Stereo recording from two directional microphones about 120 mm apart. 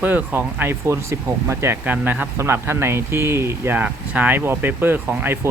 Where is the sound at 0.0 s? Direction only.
15° right (ahead or behind).